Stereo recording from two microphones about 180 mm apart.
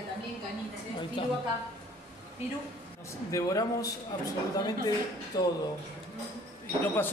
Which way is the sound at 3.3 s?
20° left (ahead or behind).